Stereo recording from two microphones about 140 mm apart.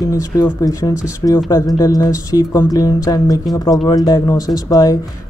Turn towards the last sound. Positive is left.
turn(degrees=25)  # may be behind; listen again after turning